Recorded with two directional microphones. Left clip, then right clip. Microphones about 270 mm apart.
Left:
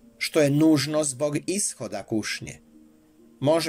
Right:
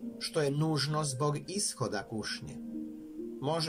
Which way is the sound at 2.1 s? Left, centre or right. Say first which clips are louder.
Left 9 dB; left.